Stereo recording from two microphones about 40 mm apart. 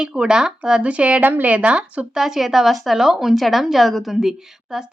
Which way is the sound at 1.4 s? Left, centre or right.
Right.